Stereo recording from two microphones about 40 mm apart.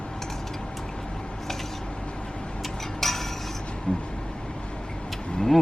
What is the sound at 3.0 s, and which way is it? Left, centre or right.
Cutlery, centre.